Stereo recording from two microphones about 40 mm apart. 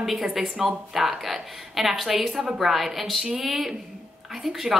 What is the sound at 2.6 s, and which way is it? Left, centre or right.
Speech, centre.